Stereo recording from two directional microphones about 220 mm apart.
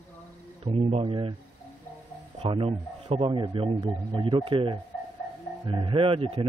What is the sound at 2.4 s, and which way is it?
Speech, 25° right (ahead or behind).